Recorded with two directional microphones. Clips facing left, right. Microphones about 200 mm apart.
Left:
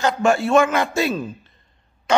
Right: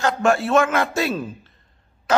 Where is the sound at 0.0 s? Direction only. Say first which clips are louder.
Left 1 dB; centre (ahead or behind).